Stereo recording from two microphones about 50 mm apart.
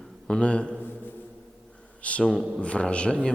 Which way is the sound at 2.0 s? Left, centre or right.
Left.